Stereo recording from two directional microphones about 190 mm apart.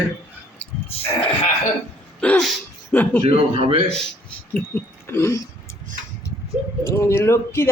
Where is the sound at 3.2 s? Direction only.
30° right (ahead or behind).